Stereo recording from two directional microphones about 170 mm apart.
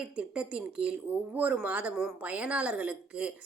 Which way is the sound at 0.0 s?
5° right (ahead or behind).